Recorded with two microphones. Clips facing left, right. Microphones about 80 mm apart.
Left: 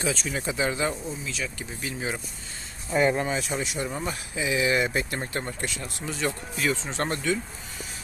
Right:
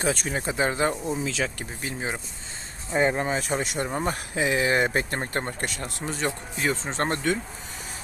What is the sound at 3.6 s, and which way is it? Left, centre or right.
Speech, right.